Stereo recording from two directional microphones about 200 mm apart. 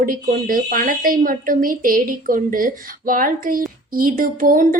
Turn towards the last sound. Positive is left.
turn(degrees=-45)  # may be behind; listen again after turning